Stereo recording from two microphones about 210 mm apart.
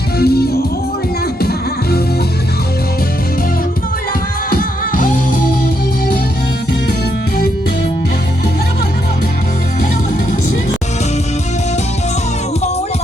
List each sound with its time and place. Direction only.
0.2 s music: 50° left (ahead or behind)